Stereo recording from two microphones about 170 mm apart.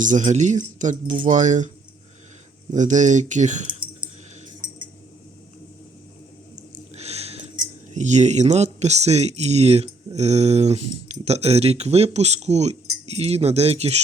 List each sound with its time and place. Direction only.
0.0 s speech: 45° right (ahead or behind)
2.7 s speech: 45° right (ahead or behind)
6.9 s a sound: 40° right (ahead or behind)
7.5 s speech: 45° right (ahead or behind)